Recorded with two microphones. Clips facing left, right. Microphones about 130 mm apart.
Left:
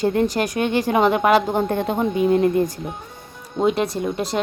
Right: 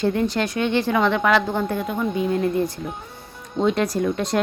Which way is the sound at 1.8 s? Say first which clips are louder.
Left 4 dB; 30° left (ahead or behind).